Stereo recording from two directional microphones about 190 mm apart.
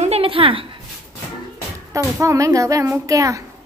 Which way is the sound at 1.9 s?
15° right (ahead or behind).